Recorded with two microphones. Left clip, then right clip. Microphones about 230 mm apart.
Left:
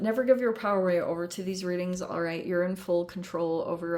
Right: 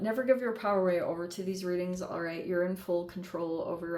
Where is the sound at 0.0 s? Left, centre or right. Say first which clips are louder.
Left 4 dB; left.